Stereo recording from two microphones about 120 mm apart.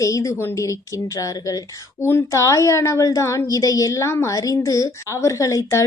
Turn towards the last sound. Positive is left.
turn(degrees=25)  # may be behind; listen again after turning